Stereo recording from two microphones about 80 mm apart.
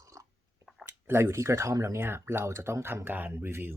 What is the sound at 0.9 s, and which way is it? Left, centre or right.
Speech, right.